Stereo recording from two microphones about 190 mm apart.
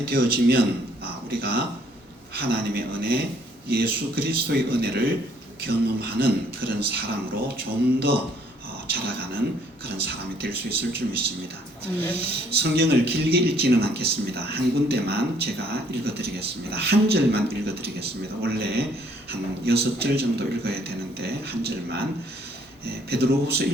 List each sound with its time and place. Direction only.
0.1 s speech: 55° right (ahead or behind)